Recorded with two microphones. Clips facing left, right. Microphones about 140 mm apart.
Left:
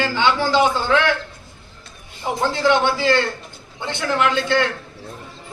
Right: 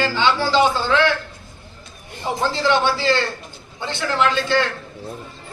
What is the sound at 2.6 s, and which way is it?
A man's voice, 15° left (ahead or behind).